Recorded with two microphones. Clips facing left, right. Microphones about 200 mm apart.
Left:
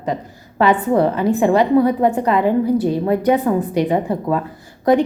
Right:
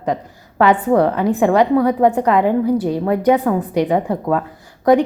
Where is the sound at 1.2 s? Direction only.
15° right (ahead or behind).